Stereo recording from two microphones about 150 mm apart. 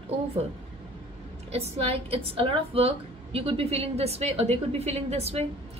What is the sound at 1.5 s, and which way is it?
A woman's voice, 40° right (ahead or behind).